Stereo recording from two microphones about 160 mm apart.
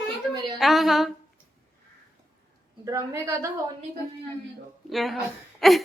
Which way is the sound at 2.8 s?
20° right (ahead or behind).